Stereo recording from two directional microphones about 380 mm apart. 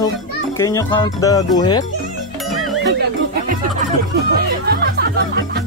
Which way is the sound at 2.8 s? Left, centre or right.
Right.